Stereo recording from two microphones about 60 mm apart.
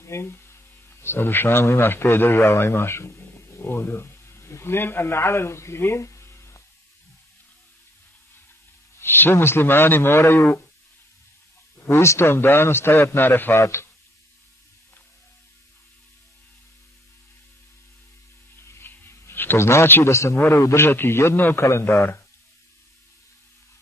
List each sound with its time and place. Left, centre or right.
0.0 s a man's voice: left
9.0 s a man's voice: left
11.9 s a man's voice: left
13.6 s a man's voice: left
18.6 s a sound: left
20.4 s a man's voice: left